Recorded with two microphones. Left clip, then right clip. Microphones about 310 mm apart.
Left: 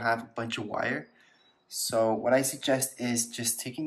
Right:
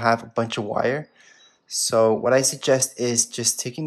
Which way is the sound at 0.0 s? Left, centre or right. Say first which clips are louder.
Right 8 dB; right.